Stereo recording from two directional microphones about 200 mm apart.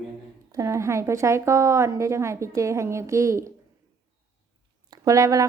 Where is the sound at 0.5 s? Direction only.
15° right (ahead or behind).